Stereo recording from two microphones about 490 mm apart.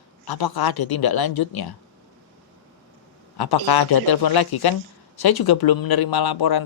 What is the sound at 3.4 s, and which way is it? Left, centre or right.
Speech, left.